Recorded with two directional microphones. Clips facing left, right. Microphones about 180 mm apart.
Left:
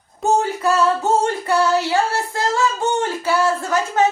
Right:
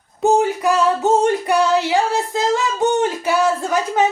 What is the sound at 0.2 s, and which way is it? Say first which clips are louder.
Female singing: right 3 dB; 15° right (ahead or behind).